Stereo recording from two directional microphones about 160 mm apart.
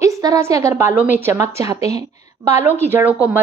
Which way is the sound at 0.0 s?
20° right (ahead or behind).